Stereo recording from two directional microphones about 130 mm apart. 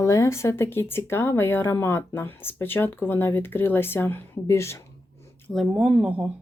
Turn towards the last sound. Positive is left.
turn(degrees=-10)  # may be behind; listen again after turning